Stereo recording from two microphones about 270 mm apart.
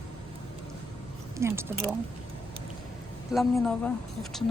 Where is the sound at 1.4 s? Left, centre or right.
Centre.